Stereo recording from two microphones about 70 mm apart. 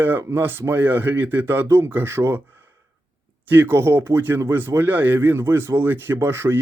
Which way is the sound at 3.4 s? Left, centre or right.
Right.